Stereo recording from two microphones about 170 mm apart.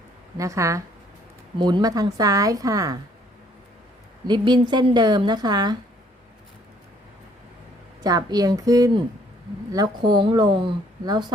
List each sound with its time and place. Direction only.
0.3 s speech: 20° right (ahead or behind)
4.3 s speech: 25° right (ahead or behind)
8.0 s speech: 20° right (ahead or behind)